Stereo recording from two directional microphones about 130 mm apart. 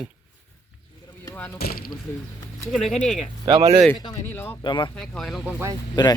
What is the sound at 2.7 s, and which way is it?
Speech, 5° left (ahead or behind).